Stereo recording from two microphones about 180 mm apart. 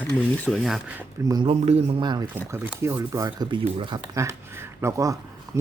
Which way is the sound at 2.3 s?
15° right (ahead or behind).